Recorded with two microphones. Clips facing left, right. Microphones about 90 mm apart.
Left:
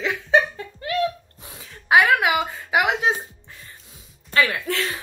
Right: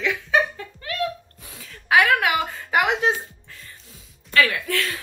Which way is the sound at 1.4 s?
25° left (ahead or behind).